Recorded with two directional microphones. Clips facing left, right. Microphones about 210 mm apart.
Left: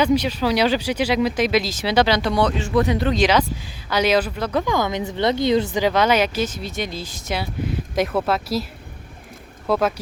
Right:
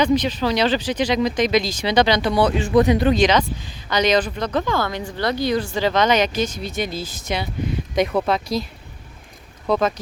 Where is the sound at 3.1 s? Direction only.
5° left (ahead or behind).